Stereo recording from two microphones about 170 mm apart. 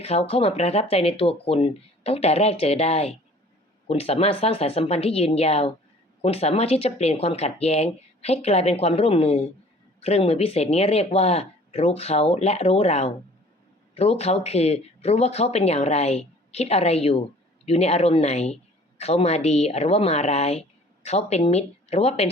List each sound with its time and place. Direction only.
0.0 s speech: 35° left (ahead or behind)